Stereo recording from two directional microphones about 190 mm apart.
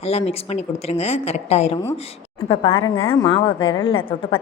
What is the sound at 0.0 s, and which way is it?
A woman's voice, 30° left (ahead or behind).